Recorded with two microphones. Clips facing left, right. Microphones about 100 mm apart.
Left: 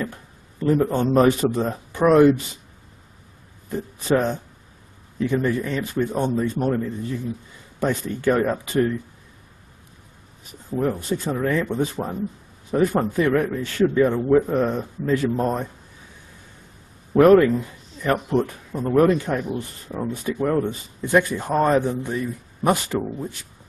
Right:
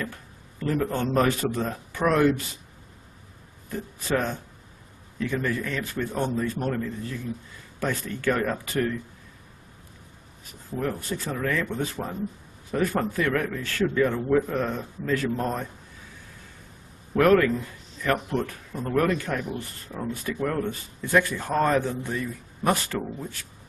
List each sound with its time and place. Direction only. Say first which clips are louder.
0.0 s a man's voice: left 4 dB; 20° left (ahead or behind)
3.6 s speech: left 7 dB; 20° left (ahead or behind)
10.7 s speech: left 6 dB; 20° left (ahead or behind)
17.1 s speech: left 6 dB; 20° left (ahead or behind)